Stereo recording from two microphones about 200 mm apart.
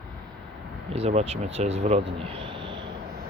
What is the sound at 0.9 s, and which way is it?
Speech, 30° right (ahead or behind).